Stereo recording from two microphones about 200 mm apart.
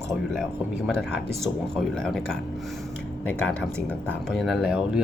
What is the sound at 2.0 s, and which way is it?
Speech, 5° left (ahead or behind).